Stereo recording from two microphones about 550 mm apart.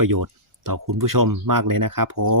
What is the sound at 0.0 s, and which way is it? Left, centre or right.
Speech, right.